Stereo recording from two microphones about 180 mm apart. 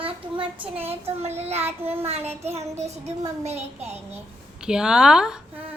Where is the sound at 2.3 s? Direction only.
35° right (ahead or behind).